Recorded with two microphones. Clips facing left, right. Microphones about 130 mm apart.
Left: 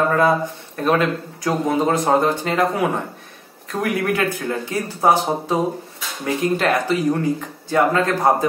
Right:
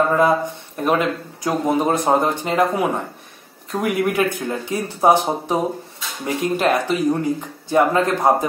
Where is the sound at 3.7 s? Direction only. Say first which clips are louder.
Right 1 dB; 20° right (ahead or behind).